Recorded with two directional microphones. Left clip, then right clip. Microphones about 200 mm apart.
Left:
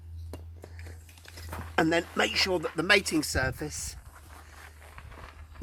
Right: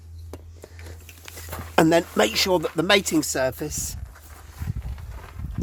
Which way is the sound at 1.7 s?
55° right (ahead or behind).